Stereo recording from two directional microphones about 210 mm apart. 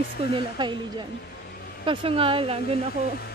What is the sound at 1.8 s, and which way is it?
Speech, 25° right (ahead or behind).